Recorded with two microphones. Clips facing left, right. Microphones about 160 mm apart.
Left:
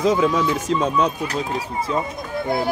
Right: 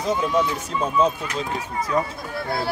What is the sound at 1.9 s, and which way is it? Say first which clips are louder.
Speech: right 1 dB; 20° left (ahead or behind).